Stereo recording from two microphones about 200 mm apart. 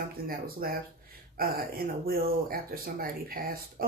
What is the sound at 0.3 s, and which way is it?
Speech, 50° right (ahead or behind).